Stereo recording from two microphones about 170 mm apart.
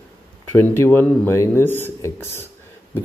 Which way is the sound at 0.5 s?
15° left (ahead or behind).